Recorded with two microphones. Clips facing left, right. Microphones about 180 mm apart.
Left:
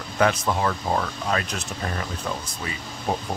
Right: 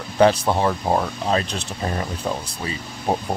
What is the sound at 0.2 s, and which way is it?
Speech, 30° right (ahead or behind).